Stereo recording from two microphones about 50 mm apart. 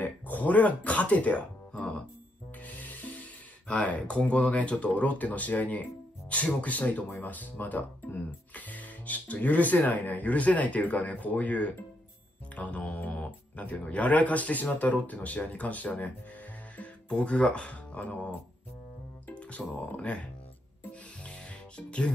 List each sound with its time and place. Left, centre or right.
0.0 s speech: left
2.6 s speech: left
21.2 s music: left